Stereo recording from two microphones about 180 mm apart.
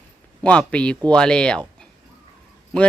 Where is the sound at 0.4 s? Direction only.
5° left (ahead or behind).